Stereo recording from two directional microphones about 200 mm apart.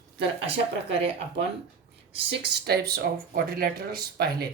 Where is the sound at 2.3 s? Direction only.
55° right (ahead or behind).